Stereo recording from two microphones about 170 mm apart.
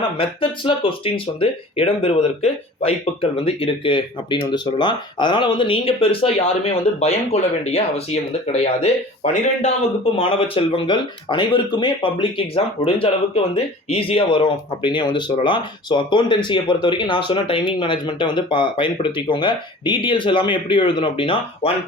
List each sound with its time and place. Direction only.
0.2 s speech: 30° left (ahead or behind)